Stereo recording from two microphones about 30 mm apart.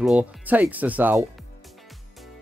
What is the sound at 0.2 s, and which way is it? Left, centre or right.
Speech, right.